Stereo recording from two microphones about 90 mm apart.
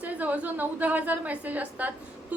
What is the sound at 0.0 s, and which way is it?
A woman's voice, 15° right (ahead or behind).